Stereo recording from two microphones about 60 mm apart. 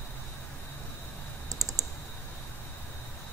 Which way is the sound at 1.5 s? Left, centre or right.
Right.